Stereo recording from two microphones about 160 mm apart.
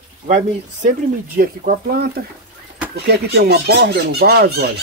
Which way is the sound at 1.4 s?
75° right (ahead or behind).